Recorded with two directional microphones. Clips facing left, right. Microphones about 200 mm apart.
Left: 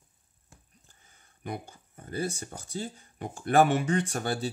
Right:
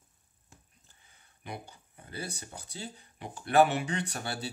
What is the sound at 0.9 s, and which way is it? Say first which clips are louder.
Speech: left 2 dB; 45° left (ahead or behind).